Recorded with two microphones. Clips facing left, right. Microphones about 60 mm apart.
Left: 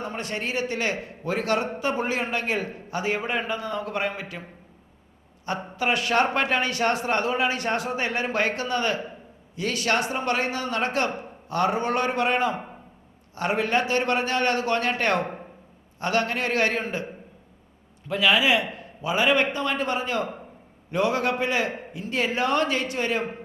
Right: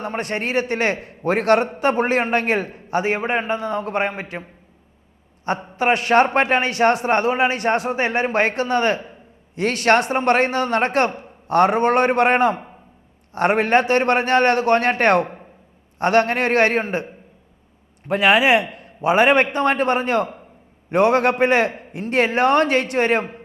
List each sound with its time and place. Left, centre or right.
0.0 s a man's voice: right
5.5 s a man's voice: right